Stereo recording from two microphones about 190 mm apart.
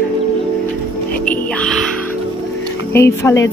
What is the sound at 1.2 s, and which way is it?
Music, 5° left (ahead or behind).